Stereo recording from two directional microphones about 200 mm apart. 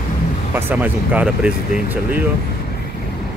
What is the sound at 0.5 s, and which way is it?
Speech, 10° right (ahead or behind).